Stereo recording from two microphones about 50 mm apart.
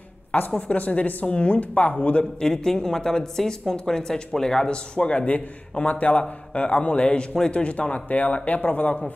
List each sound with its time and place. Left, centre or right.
0.6 s a woman's voice: left
2.4 s a woman's voice: centre; by 9.1 s left